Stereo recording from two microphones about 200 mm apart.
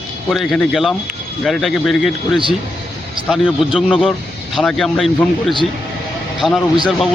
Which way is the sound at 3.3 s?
Centre (ahead or behind).